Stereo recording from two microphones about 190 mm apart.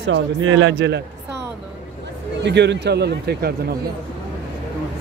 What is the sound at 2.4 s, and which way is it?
Speech, 65° right (ahead or behind).